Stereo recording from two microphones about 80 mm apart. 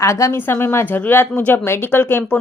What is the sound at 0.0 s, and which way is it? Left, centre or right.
A woman's voice, left.